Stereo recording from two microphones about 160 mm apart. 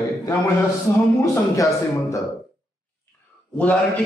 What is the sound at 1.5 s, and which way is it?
Speech, 20° left (ahead or behind).